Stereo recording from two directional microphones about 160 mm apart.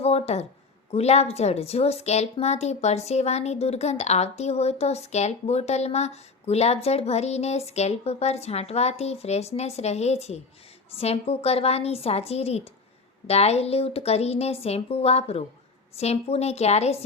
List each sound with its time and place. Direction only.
0.0 s a woman's voice: 40° left (ahead or behind)